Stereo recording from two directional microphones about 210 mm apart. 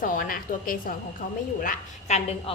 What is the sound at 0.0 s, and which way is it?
A woman's voice, 40° left (ahead or behind).